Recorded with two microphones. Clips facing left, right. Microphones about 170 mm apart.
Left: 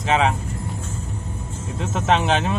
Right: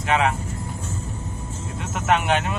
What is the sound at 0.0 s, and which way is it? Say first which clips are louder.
Speech: left 2 dB; 25° left (ahead or behind).